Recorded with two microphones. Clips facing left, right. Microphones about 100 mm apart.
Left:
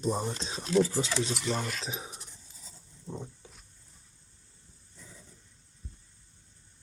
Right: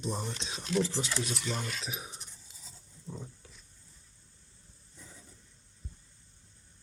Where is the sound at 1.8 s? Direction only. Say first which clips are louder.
Left 3 dB; 30° left (ahead or behind).